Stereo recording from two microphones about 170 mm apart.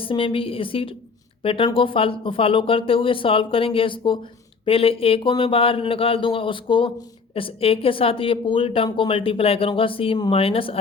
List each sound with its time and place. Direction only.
0.0 s a woman's voice: 30° left (ahead or behind)